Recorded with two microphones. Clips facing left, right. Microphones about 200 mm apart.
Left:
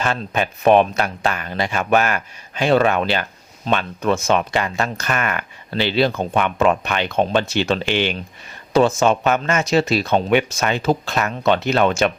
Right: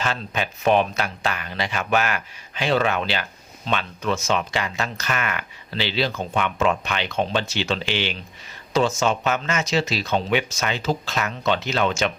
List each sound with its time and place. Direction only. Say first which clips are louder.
0.0 s speech: left 5 dB; 50° left (ahead or behind)